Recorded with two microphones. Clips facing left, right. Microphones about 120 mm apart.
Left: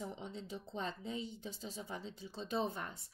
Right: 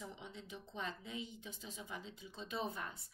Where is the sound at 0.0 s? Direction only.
35° left (ahead or behind).